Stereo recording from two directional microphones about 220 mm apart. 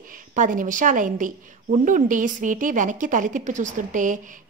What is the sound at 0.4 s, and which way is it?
A woman's voice, 35° right (ahead or behind).